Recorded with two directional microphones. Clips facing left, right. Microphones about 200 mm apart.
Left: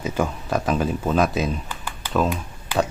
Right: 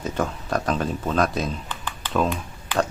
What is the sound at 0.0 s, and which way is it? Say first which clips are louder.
Speech: left 2 dB; 5° left (ahead or behind).